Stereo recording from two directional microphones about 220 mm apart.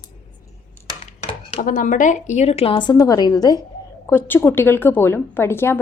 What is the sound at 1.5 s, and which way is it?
A woman's voice, 35° left (ahead or behind).